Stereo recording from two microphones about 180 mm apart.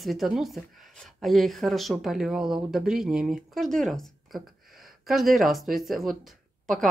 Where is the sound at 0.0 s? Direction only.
Centre (ahead or behind).